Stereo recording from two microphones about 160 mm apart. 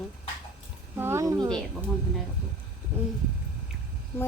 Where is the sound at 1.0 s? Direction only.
15° right (ahead or behind).